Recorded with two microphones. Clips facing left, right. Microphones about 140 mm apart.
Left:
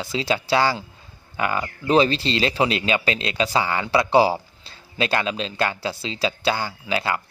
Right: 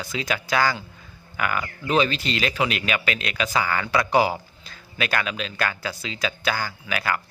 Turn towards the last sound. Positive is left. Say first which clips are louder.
# left 2 dB
turn(degrees=25)  # may be behind; listen again after turning